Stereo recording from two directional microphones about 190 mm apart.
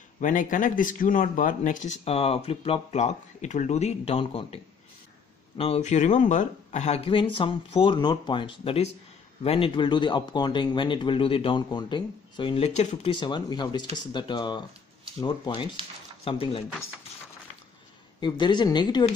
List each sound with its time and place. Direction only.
0.2 s speech: 45° left (ahead or behind)
5.6 s speech: 35° left (ahead or behind)
18.2 s speech: 25° left (ahead or behind)